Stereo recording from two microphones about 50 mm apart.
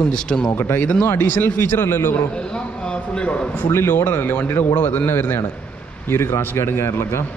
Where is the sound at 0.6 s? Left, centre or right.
Left.